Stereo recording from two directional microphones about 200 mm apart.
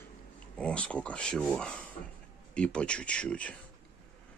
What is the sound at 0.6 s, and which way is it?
Speech, 5° left (ahead or behind).